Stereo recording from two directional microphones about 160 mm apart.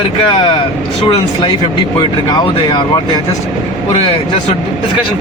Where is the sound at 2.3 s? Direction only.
25° left (ahead or behind).